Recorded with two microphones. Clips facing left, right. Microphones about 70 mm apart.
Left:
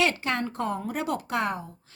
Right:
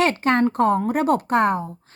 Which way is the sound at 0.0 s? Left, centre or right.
Right.